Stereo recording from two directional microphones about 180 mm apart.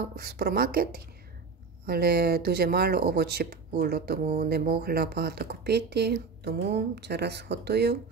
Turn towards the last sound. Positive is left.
turn(degrees=-65)  # may be behind; listen again after turning